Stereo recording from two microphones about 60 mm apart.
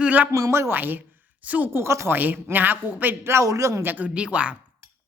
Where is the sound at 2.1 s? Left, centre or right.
Right.